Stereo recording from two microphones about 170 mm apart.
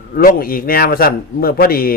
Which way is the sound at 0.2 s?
60° left (ahead or behind).